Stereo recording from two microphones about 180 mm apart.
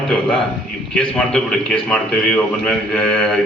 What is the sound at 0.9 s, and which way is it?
A man's voice, 5° left (ahead or behind).